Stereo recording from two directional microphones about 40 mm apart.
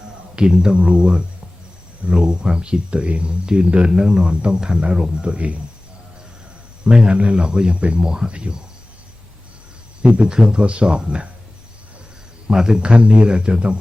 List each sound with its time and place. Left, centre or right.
0.3 s speech: right
6.8 s speech: right
10.0 s speech: right
12.5 s speech: centre